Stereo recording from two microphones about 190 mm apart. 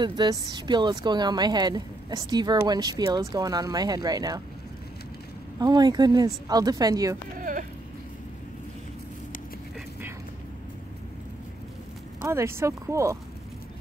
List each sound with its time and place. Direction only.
0.0 s a woman's voice: 20° right (ahead or behind)
5.6 s a woman's voice: 20° right (ahead or behind)
7.3 s a sound: 45° right (ahead or behind)
12.2 s speech: 15° right (ahead or behind)